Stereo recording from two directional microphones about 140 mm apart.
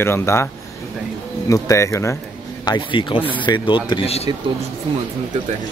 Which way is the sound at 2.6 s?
35° left (ahead or behind).